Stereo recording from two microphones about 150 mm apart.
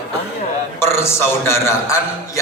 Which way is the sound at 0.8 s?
15° left (ahead or behind).